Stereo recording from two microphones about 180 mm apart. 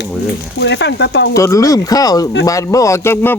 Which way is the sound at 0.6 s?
70° left (ahead or behind).